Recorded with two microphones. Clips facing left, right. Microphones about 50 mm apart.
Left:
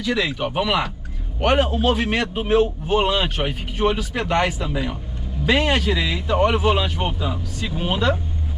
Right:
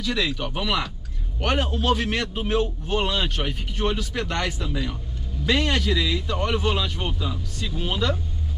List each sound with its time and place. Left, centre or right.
0.0 s a man's voice: left